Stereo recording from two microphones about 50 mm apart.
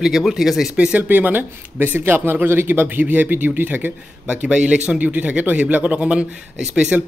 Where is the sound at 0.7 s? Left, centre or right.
Right.